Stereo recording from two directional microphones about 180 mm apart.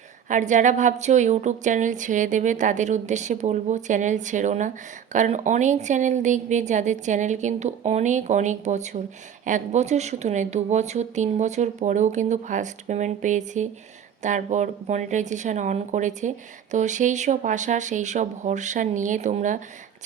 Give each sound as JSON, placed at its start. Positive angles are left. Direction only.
{"t": 0.3, "sound": "a woman's voice", "side_deg": -45}